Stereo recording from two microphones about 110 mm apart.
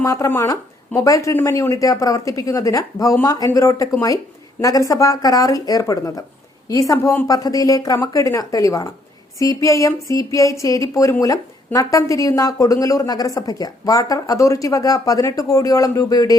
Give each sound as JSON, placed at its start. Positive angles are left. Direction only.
{"t": 0.0, "sound": "a woman's voice", "side_deg": 30}